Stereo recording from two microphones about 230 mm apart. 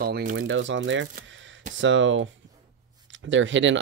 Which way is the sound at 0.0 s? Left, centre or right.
Right.